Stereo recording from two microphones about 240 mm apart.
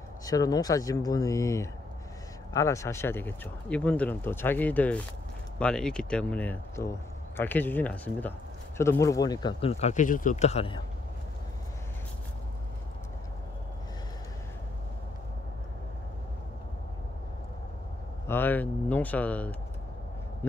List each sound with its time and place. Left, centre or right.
0.2 s speech: centre
18.2 s speech: centre